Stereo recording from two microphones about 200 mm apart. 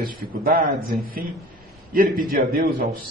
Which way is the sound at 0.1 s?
45° right (ahead or behind).